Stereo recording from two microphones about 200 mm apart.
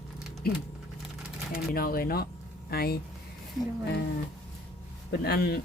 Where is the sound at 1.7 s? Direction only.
45° left (ahead or behind).